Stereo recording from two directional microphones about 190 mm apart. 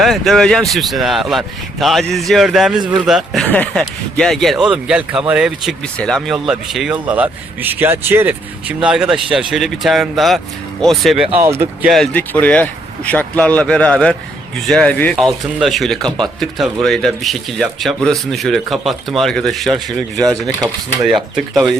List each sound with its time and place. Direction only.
0.0 s speech: centre (ahead or behind)
2.8 s speech: 25° right (ahead or behind)
3.1 s speech: centre (ahead or behind)
11.4 s speech: 15° right (ahead or behind)
11.9 s speech: 5° left (ahead or behind)